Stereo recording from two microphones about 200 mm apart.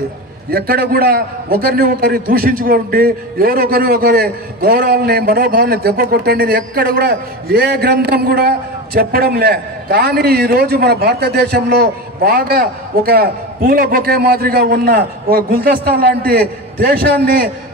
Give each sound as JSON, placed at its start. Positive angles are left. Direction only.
{"t": 0.5, "sound": "a man's voice", "side_deg": -50}